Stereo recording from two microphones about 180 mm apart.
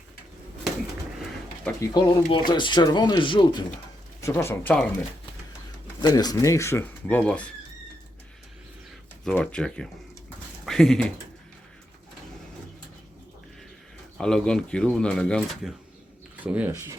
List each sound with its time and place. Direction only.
1.8 s speech: 25° left (ahead or behind)
4.2 s speech: 15° left (ahead or behind)
6.0 s speech: 20° left (ahead or behind)
9.2 s pigeon: 5° left (ahead or behind)
14.2 s speech: 5° left (ahead or behind)
16.4 s speech: 10° right (ahead or behind)